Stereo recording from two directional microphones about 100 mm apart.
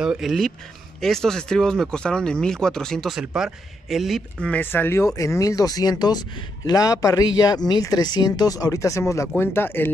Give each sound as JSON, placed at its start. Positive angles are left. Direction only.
{"t": 0.0, "sound": "speech", "side_deg": -5}
{"t": 3.2, "sound": "speech", "side_deg": -5}
{"t": 4.4, "sound": "speech", "side_deg": 15}